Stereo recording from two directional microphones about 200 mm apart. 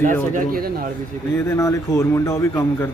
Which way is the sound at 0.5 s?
45° right (ahead or behind).